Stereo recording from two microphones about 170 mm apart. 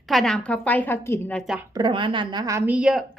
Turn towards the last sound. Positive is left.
turn(degrees=-5)  # may be behind; listen again after turning